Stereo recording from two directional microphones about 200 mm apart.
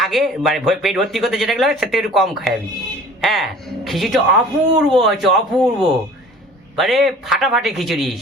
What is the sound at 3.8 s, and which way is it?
Speech, centre (ahead or behind).